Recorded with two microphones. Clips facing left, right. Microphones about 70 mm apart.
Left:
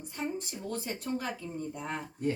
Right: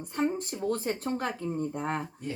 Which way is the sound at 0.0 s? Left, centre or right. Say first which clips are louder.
Right 7 dB; right.